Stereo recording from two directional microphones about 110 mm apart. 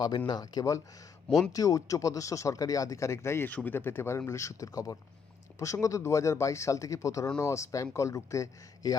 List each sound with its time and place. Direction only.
0.3 s speech: 40° left (ahead or behind)